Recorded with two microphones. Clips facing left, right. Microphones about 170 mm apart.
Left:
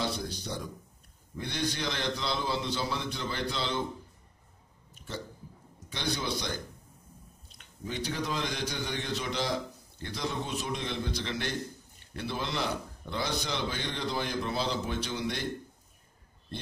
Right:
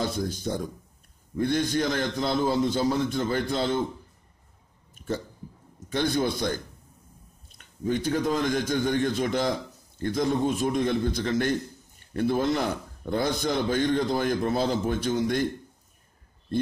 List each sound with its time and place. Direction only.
0.0 s a man's voice: 50° right (ahead or behind)
5.1 s a man's voice: 50° right (ahead or behind)